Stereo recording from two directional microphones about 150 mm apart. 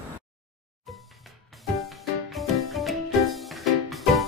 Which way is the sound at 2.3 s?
Centre (ahead or behind).